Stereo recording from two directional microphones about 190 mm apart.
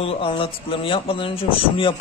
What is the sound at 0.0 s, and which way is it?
Speech, 30° left (ahead or behind).